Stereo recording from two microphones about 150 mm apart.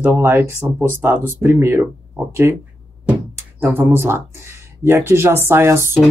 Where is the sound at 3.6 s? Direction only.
10° right (ahead or behind).